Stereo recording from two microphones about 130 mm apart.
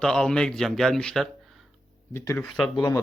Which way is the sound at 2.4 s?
5° left (ahead or behind).